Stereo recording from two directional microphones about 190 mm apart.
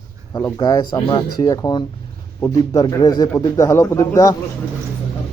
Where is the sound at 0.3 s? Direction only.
20° left (ahead or behind).